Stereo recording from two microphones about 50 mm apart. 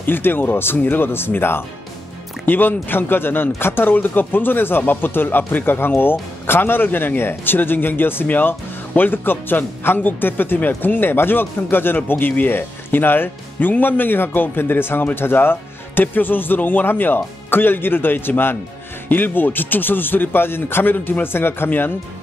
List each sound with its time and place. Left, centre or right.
0.0 s speech: left
20.9 s speech: left
21.3 s speech: left